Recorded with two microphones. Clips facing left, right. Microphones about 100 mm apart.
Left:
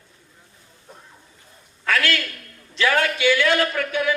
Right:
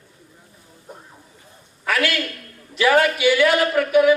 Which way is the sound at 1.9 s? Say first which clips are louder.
Right 1 dB; 20° right (ahead or behind).